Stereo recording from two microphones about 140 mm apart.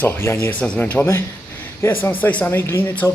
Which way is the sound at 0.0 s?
15° left (ahead or behind).